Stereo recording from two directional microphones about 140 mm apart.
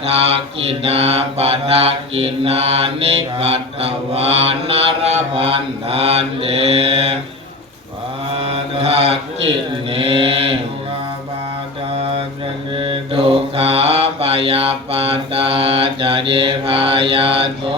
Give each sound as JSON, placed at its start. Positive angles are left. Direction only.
{"t": 0.3, "sound": "mantra", "side_deg": -45}
{"t": 8.3, "sound": "mantra", "side_deg": -45}
{"t": 12.7, "sound": "mantra", "side_deg": -40}